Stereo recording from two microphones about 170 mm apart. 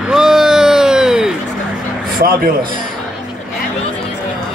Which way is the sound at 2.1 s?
60° right (ahead or behind).